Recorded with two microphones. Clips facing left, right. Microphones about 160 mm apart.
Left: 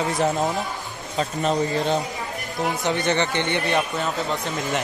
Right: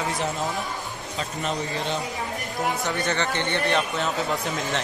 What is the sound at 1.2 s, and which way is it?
Speech, 40° left (ahead or behind).